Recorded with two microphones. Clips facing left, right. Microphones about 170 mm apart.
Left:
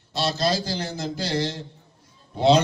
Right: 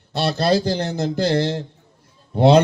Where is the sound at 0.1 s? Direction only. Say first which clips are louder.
Right 5 dB; 60° right (ahead or behind).